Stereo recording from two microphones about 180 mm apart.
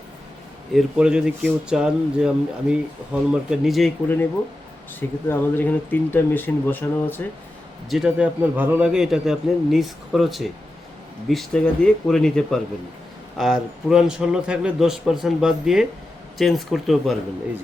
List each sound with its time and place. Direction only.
0.7 s speech: centre (ahead or behind)
4.9 s speech: 10° left (ahead or behind)
7.9 s speech: 5° right (ahead or behind)